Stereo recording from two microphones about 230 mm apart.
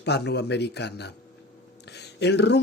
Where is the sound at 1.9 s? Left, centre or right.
Left.